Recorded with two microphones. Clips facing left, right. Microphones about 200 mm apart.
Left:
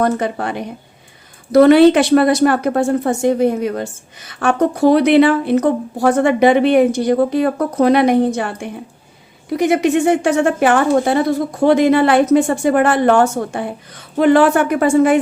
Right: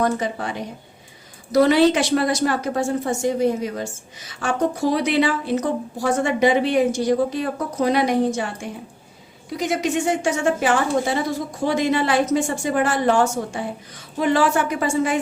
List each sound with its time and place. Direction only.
0.0 s a woman's voice: 60° left (ahead or behind)